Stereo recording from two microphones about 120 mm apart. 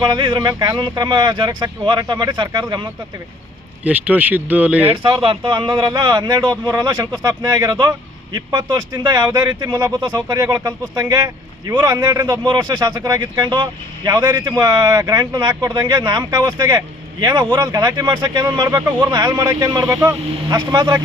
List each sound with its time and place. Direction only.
0.1 s speech: 40° right (ahead or behind)
0.4 s speech: 25° right (ahead or behind)
0.8 s speech: 35° right (ahead or behind)
3.8 s speech: 15° right (ahead or behind)
4.9 s speech: 45° right (ahead or behind); by 18.8 s 30° right (ahead or behind)
18.9 s speech: 15° right (ahead or behind)
19.1 s speech: 35° right (ahead or behind)
20.6 s speech: 35° right (ahead or behind)